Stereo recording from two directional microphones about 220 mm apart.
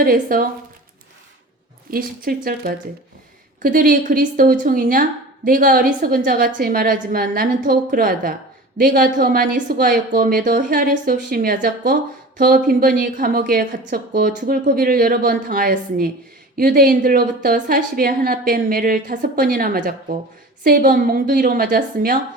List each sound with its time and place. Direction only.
0.0 s a woman's voice: 40° right (ahead or behind)
1.9 s a woman's voice: 40° right (ahead or behind)